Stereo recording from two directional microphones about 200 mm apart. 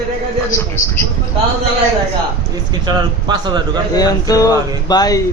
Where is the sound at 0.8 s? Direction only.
40° left (ahead or behind).